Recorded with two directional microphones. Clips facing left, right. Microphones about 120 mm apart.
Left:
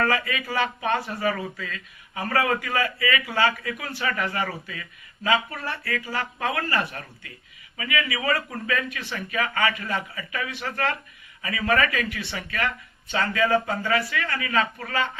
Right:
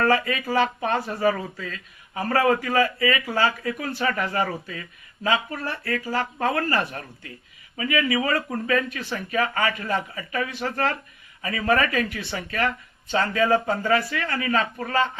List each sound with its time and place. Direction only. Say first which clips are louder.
0.0 s speech: right 3 dB; 40° right (ahead or behind)